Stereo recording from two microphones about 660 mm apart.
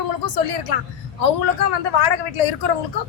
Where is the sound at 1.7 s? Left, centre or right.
Left.